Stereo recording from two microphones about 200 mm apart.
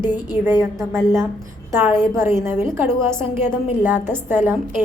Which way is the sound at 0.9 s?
15° right (ahead or behind).